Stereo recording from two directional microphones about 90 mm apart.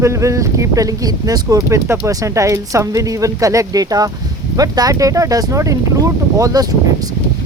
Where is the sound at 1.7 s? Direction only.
35° right (ahead or behind).